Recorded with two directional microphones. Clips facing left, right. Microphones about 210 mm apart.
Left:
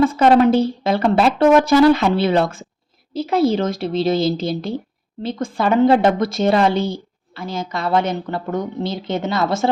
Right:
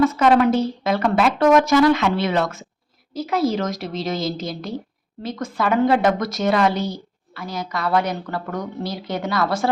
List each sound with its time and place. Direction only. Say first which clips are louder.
0.0 s speech: left 3 dB; 30° left (ahead or behind)